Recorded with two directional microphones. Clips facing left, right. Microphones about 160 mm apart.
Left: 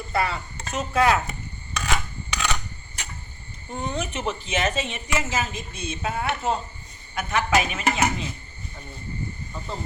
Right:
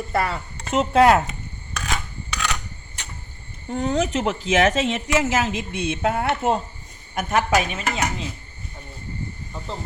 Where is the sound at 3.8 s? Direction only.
90° right; by 7.6 s 45° right (ahead or behind).